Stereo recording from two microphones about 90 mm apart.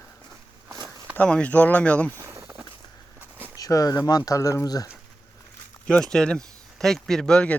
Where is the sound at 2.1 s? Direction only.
30° right (ahead or behind).